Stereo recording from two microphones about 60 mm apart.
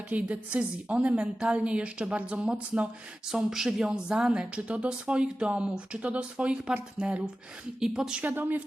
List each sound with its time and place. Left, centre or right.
0.1 s a woman's voice: right
3.3 s a woman's voice: centre
8.2 s a woman's voice: right